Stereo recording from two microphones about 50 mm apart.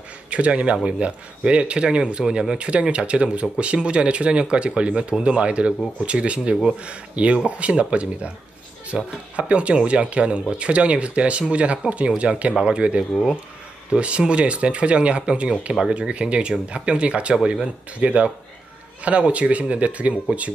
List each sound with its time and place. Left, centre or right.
0.3 s speech: right
17.4 s speech: centre
17.9 s speech: right